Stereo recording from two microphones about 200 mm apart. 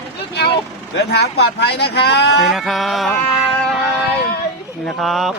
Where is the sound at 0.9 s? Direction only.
55° left (ahead or behind).